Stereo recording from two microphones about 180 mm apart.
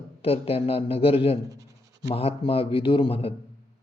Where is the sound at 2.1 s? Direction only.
30° left (ahead or behind).